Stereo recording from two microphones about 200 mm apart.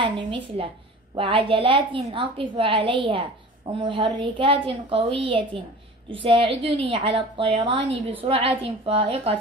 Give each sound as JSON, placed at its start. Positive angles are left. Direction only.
{"t": 0.0, "sound": "a woman's voice", "side_deg": -25}